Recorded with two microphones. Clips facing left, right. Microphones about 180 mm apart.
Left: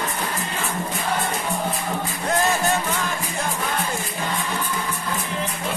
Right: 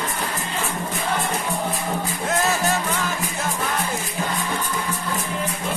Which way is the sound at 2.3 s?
Centre (ahead or behind).